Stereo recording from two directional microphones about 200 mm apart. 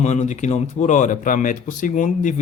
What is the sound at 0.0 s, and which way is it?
Speech, 35° left (ahead or behind).